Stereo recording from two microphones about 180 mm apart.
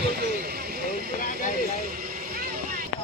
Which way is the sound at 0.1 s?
60° right (ahead or behind).